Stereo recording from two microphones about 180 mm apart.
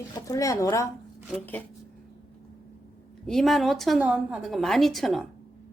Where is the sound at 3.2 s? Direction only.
Centre (ahead or behind).